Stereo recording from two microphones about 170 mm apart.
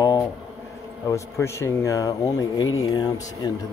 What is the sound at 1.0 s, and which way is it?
Speech, 15° left (ahead or behind).